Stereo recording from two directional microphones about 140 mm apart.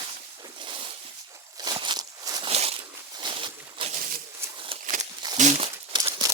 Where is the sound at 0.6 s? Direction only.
40° right (ahead or behind).